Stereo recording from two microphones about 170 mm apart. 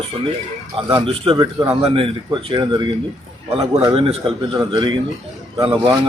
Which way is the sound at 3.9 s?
35° right (ahead or behind).